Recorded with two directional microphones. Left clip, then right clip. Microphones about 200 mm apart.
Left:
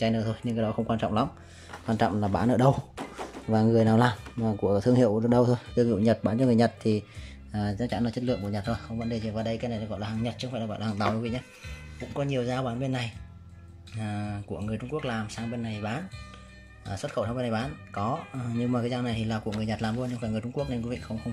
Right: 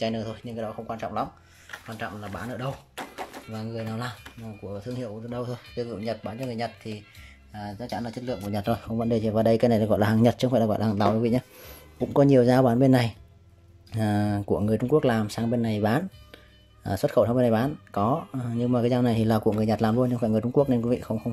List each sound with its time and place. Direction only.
0.0 s speech: centre (ahead or behind)
1.7 s speech: 25° left (ahead or behind); by 21.3 s 20° right (ahead or behind)